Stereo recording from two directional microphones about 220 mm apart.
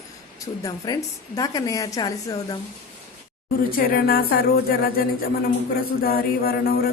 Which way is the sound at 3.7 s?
45° left (ahead or behind).